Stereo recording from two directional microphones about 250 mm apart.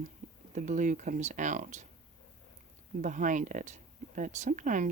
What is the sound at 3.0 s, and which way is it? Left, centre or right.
Speech, right.